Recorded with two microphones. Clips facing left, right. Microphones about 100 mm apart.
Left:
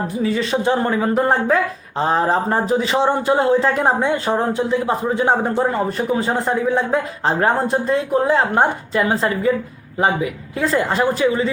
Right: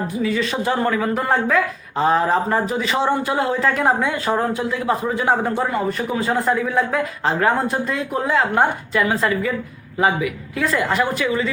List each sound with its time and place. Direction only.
0.2 s a woman's voice: 30° left (ahead or behind)